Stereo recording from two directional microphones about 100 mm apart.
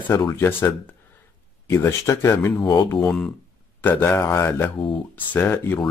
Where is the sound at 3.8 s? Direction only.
20° left (ahead or behind).